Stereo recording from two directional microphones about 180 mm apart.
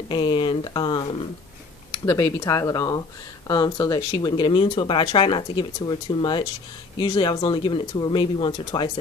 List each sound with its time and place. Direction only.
0.1 s speech: 25° left (ahead or behind)